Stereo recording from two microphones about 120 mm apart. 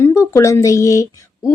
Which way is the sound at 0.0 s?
25° left (ahead or behind).